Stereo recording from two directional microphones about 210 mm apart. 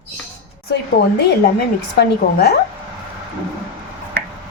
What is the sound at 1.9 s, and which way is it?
Speech, 50° left (ahead or behind).